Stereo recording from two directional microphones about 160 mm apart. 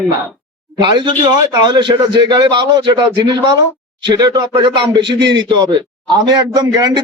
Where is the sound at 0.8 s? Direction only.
30° right (ahead or behind).